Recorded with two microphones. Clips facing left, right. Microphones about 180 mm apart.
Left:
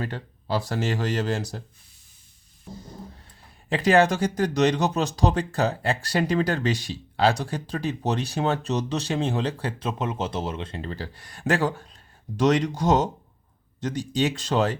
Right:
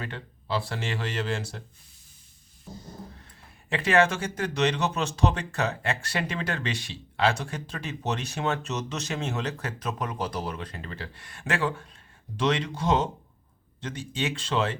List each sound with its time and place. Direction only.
0.0 s speech: 40° left (ahead or behind)
3.7 s speech: 35° left (ahead or behind)